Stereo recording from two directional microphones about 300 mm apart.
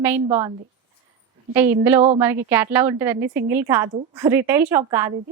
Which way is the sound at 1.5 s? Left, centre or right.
Centre.